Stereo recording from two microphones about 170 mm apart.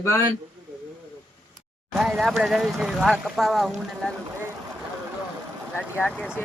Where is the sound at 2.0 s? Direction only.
Centre (ahead or behind).